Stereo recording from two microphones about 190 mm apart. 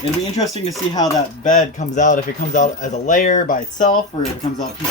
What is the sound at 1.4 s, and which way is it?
Speech, 40° left (ahead or behind).